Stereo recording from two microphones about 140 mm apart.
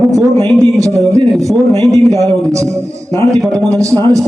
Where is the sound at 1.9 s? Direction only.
25° right (ahead or behind).